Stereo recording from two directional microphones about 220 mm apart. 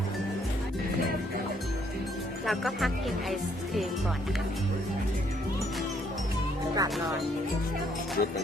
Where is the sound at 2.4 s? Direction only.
Centre (ahead or behind).